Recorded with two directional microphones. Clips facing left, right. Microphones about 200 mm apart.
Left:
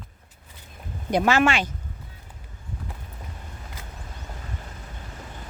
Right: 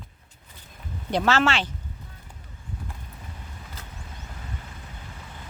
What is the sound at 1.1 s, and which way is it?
Speech, 15° left (ahead or behind).